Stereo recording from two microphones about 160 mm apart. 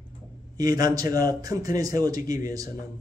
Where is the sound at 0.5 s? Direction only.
20° right (ahead or behind).